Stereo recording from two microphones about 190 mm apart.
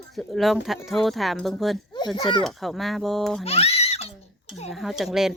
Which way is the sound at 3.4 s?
30° left (ahead or behind).